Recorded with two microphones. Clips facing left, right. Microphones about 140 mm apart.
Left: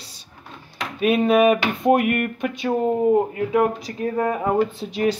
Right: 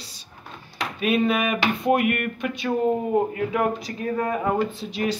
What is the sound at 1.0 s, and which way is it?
Speech, 40° left (ahead or behind).